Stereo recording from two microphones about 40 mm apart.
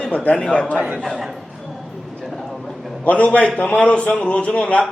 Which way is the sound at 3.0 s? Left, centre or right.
Left.